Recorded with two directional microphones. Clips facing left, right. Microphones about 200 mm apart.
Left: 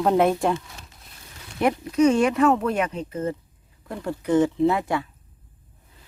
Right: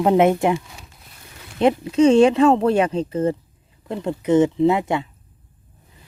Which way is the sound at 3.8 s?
20° right (ahead or behind).